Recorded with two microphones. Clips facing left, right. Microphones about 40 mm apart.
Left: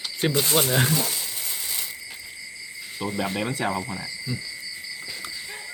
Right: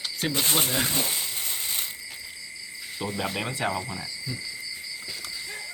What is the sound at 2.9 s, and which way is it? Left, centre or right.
Speech, centre.